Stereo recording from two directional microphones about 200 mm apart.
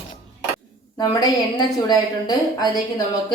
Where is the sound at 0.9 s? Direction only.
20° left (ahead or behind).